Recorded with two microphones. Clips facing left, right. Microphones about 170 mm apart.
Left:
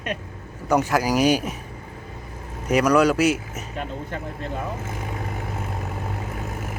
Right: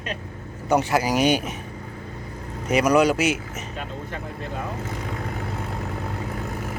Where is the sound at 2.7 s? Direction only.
Centre (ahead or behind).